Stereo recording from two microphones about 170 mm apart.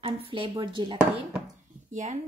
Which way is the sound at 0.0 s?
35° right (ahead or behind).